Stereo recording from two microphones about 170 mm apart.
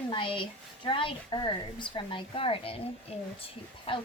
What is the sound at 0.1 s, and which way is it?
Speech, 30° left (ahead or behind).